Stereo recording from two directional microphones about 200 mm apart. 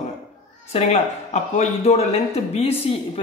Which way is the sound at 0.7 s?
35° left (ahead or behind).